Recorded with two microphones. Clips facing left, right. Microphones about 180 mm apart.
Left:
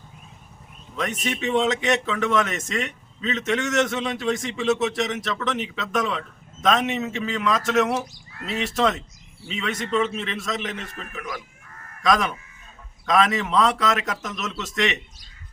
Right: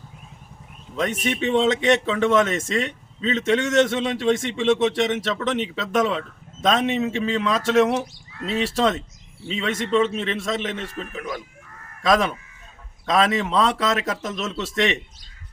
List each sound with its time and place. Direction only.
0.9 s a man's voice: 30° right (ahead or behind)
13.1 s speech: 30° right (ahead or behind)